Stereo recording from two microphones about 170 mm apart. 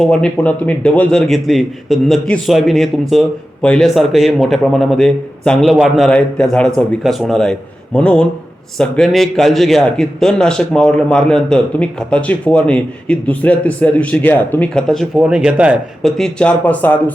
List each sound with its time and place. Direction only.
0.0 s a man's voice: 5° left (ahead or behind)
16.1 s speech: 5° left (ahead or behind)